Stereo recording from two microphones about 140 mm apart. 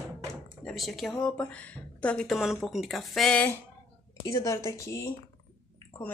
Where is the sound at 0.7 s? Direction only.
Centre (ahead or behind).